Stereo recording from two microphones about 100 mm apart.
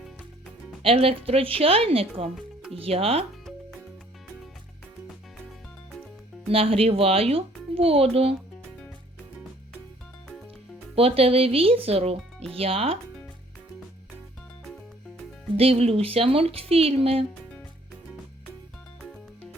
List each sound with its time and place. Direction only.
0.8 s a child's voice: 75° right (ahead or behind)
6.5 s a child's voice: 70° right (ahead or behind)
10.9 s a child's voice: 75° right (ahead or behind)
15.5 s a child's voice: 75° right (ahead or behind)